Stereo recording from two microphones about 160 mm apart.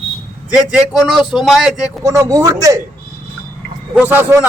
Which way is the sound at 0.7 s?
Centre (ahead or behind).